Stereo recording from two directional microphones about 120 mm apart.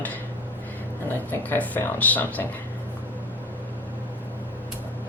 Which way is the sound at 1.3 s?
15° left (ahead or behind).